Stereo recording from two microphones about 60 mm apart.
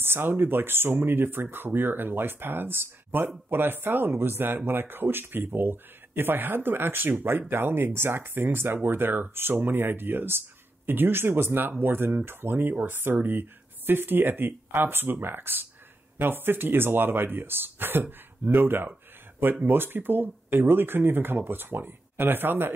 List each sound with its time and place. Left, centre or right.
0.0 s speech: right